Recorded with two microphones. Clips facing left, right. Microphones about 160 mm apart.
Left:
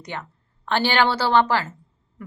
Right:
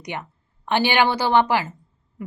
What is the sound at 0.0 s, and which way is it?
A woman's voice, 15° right (ahead or behind).